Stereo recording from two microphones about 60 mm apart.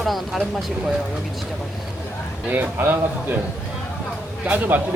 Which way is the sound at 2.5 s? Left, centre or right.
Right.